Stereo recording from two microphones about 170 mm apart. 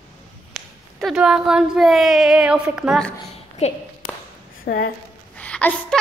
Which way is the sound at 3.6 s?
40° left (ahead or behind).